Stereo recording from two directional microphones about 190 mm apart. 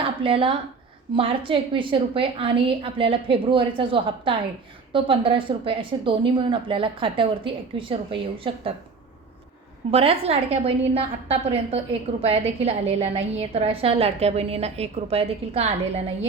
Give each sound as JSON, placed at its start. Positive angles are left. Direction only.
{"t": 0.0, "sound": "a woman's voice", "side_deg": -30}
{"t": 9.9, "sound": "a woman's voice", "side_deg": -30}